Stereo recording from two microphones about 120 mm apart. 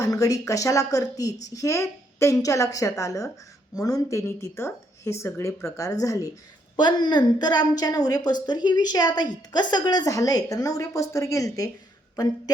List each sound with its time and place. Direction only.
0.0 s a woman's voice: 30° left (ahead or behind)